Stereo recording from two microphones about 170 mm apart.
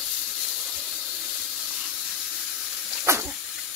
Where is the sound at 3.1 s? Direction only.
15° right (ahead or behind).